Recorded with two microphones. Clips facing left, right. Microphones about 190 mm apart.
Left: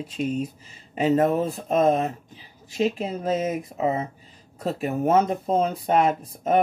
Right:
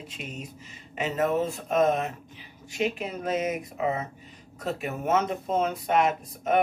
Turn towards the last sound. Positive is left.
turn(degrees=35)  # may be behind; listen again after turning